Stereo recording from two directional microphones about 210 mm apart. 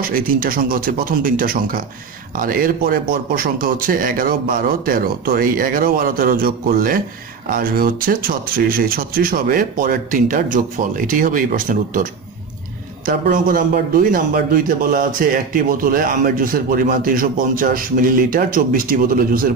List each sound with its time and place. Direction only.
0.0 s a man's voice: 45° right (ahead or behind)